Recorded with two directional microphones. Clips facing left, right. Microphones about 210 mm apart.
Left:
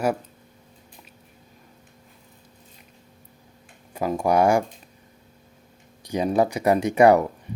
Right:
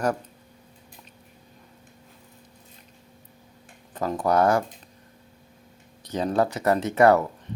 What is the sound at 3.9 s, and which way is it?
Speech, 10° left (ahead or behind).